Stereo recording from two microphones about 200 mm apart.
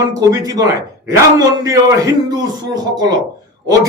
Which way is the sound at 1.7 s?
15° right (ahead or behind).